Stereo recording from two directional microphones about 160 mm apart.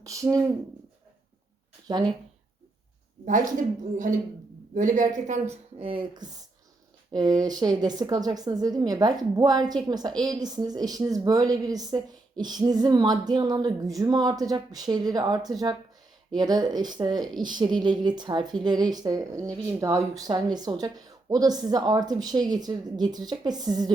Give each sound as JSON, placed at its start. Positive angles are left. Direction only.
{"t": 0.0, "sound": "a woman's voice", "side_deg": -20}
{"t": 4.7, "sound": "speech", "side_deg": -55}
{"t": 5.8, "sound": "a woman's voice", "side_deg": -30}